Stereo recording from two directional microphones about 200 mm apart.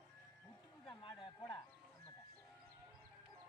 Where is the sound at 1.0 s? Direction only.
25° left (ahead or behind).